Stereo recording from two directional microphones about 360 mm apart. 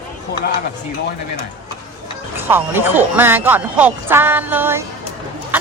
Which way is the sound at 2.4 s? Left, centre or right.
Centre.